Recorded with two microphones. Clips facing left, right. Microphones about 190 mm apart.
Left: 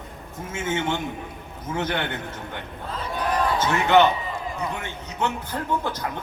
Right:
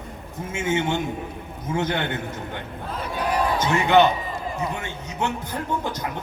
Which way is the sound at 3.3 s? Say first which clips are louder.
Right 1 dB; 15° right (ahead or behind).